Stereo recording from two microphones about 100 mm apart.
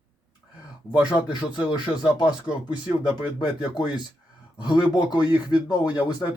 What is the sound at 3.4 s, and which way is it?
Speech, 45° left (ahead or behind).